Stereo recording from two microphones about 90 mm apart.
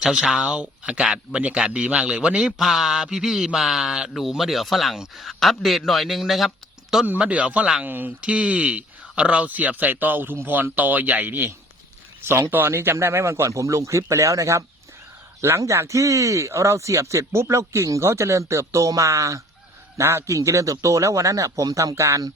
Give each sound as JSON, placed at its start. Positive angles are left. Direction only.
{"t": 0.0, "sound": "speech", "side_deg": -5}
{"t": 7.0, "sound": "speech", "side_deg": -15}